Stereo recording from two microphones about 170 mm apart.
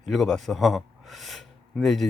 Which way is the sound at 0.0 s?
Centre (ahead or behind).